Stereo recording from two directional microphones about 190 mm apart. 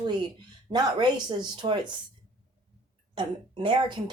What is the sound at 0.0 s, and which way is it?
Speech, 20° right (ahead or behind).